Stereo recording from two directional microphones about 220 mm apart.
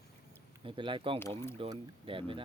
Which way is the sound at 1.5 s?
25° right (ahead or behind).